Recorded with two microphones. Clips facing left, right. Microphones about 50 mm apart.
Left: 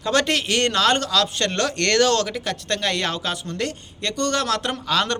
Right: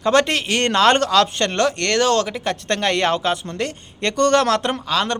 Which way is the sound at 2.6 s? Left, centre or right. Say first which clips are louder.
Right 5 dB; right.